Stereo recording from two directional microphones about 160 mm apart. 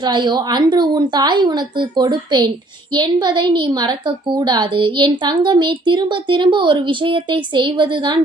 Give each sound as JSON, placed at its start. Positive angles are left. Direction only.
{"t": 0.0, "sound": "a woman's voice", "side_deg": -30}